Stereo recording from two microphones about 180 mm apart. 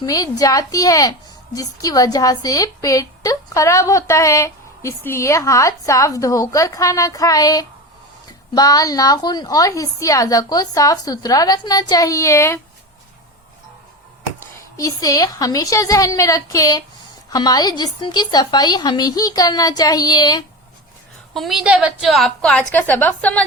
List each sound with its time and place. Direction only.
0.0 s a woman's voice: 20° left (ahead or behind)
14.8 s a woman's voice: 20° left (ahead or behind)
21.3 s a woman's voice: centre (ahead or behind)